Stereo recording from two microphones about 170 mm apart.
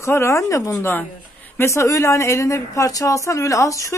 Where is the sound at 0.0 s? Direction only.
15° left (ahead or behind).